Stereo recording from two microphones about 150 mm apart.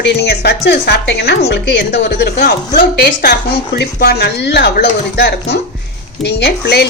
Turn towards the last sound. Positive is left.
turn(degrees=90)